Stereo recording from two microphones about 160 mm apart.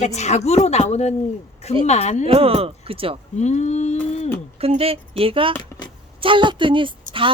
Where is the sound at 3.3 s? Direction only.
45° left (ahead or behind).